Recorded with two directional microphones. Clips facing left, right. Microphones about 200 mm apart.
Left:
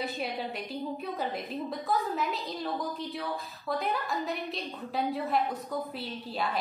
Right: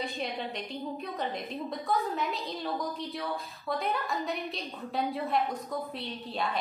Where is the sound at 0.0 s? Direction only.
5° left (ahead or behind).